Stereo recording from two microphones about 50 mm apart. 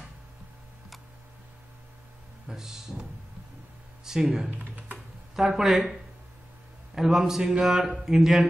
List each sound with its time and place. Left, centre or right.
2.4 s a man's voice: centre
4.5 s computer keyboard: right
5.3 s speech: centre
7.0 s a man's voice: centre